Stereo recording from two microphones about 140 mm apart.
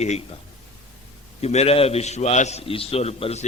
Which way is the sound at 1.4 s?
50° left (ahead or behind).